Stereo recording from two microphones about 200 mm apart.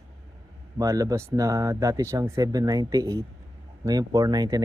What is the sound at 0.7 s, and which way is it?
Speech, 15° right (ahead or behind).